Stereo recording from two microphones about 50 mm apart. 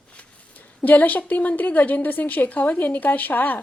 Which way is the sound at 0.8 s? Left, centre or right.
Left.